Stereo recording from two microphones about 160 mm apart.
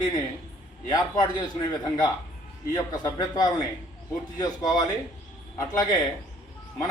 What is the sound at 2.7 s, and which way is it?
A man's voice, 25° left (ahead or behind).